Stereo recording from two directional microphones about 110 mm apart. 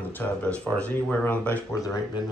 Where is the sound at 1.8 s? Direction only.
35° left (ahead or behind).